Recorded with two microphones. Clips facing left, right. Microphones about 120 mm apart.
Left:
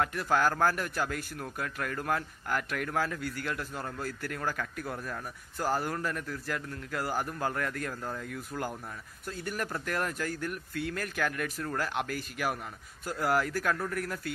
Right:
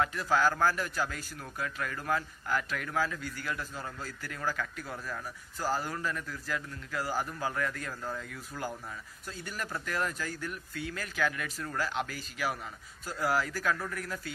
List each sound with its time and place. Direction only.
0.1 s a man's voice: 50° left (ahead or behind)